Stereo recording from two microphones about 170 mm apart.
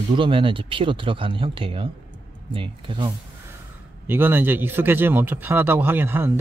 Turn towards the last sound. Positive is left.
turn(degrees=-10)  # may be behind; listen again after turning